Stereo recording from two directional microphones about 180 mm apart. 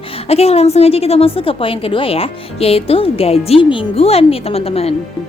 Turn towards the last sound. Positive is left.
turn(degrees=35)  # may be behind; listen again after turning